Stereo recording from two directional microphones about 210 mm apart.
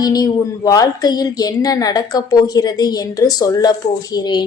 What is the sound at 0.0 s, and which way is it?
A woman's voice, 20° left (ahead or behind).